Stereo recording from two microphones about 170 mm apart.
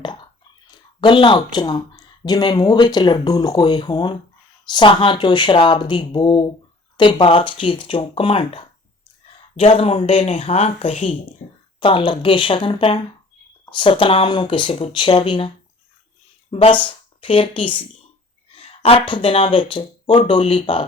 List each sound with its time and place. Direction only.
0.7 s a sound: 30° left (ahead or behind)
1.5 s speech: 25° left (ahead or behind)
16.5 s speech: 35° left (ahead or behind)